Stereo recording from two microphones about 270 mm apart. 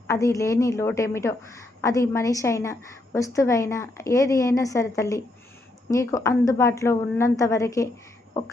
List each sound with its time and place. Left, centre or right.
0.1 s a woman's voice: centre